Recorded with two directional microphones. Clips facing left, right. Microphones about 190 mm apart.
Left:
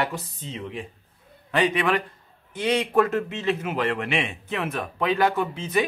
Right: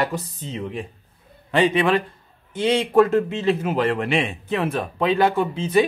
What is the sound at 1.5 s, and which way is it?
A man's voice, 30° right (ahead or behind).